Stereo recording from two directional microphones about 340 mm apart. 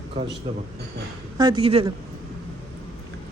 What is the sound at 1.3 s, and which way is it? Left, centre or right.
Speech, centre.